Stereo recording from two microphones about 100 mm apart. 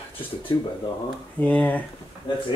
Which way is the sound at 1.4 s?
15° left (ahead or behind).